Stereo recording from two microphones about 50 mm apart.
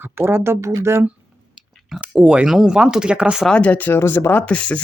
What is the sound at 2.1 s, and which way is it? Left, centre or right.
Speech, centre.